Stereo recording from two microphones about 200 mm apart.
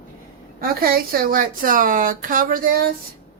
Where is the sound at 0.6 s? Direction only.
50° right (ahead or behind).